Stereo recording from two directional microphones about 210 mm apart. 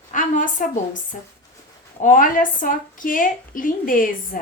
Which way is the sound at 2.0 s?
40° left (ahead or behind).